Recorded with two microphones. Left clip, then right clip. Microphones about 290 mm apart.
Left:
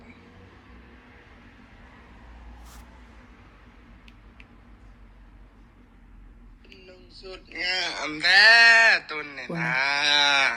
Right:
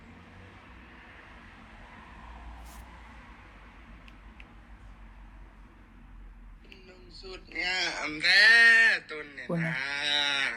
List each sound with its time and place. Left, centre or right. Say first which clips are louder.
7.5 s speech: left 3 dB; centre